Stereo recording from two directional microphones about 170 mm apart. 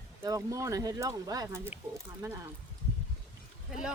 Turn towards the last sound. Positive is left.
turn(degrees=-5)  # may be behind; listen again after turning